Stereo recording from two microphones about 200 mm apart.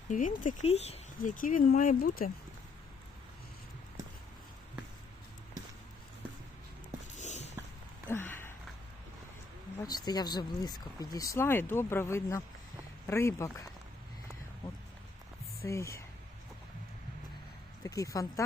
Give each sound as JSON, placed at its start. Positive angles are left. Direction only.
{"t": 0.1, "sound": "speech", "side_deg": 40}
{"t": 7.2, "sound": "a sound", "side_deg": 35}
{"t": 8.0, "sound": "a sound", "side_deg": 10}
{"t": 9.8, "sound": "speech", "side_deg": 20}
{"t": 15.6, "sound": "speech", "side_deg": 15}
{"t": 17.8, "sound": "speech", "side_deg": 15}